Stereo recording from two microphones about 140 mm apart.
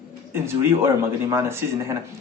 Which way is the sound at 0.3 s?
15° right (ahead or behind).